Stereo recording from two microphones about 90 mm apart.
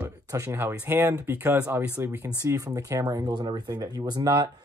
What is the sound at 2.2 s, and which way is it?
Speech, 40° right (ahead or behind).